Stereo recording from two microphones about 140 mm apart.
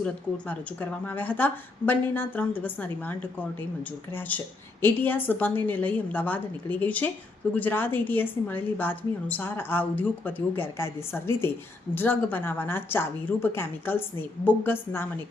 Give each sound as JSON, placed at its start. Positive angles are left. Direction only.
{"t": 0.0, "sound": "a woman's voice", "side_deg": 10}